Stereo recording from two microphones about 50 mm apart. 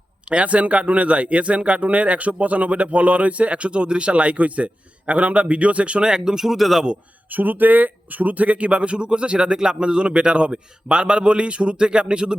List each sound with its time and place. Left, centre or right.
0.3 s a man's voice: right; by 6.8 s centre
7.3 s a man's voice: right; by 12.4 s centre